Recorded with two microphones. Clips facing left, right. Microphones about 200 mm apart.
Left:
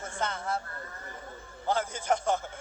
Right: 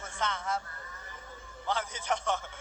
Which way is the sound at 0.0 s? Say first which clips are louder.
Left 2 dB; 45° left (ahead or behind).